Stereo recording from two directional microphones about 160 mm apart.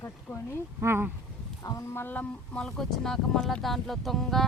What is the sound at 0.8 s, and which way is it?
Speech, 15° right (ahead or behind).